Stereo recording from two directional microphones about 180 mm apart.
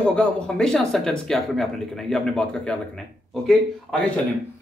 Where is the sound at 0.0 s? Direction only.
5° left (ahead or behind).